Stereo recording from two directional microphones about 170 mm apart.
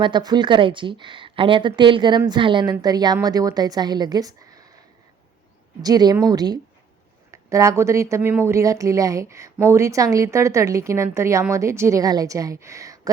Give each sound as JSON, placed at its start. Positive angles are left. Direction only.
{"t": 0.0, "sound": "a woman's voice", "side_deg": -25}
{"t": 5.8, "sound": "a woman's voice", "side_deg": -25}